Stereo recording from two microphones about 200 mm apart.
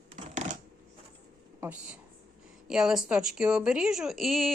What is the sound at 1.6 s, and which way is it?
Speech, 5° right (ahead or behind).